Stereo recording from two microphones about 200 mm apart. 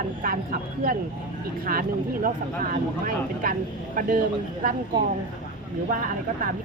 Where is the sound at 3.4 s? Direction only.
45° right (ahead or behind).